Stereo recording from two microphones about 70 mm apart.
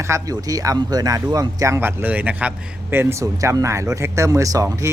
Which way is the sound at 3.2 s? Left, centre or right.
Right.